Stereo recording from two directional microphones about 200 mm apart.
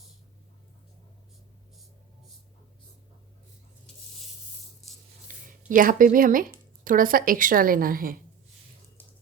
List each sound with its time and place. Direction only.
5.5 s speech: 40° right (ahead or behind)